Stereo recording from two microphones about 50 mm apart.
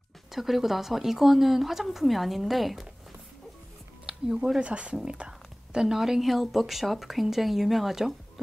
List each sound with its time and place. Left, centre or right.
0.3 s speech: centre
4.0 s speech: centre
5.0 s whispering: right
5.8 s a woman's voice: centre